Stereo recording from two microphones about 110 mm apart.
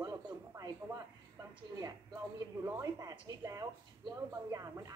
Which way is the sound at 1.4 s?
35° right (ahead or behind).